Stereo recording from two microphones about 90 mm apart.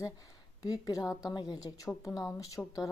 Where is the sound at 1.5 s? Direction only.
40° left (ahead or behind).